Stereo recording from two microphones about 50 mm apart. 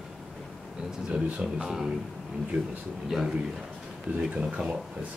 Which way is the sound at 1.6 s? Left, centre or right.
Centre.